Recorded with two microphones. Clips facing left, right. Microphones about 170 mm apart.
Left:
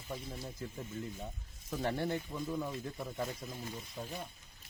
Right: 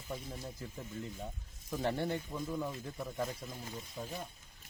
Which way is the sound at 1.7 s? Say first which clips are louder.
Even; 15° right (ahead or behind).